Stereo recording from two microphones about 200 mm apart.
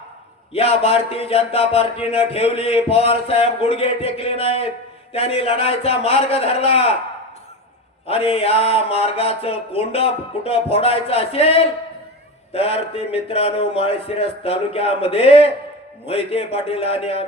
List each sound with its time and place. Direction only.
0.5 s speech: 30° left (ahead or behind)
8.0 s speech: 30° left (ahead or behind)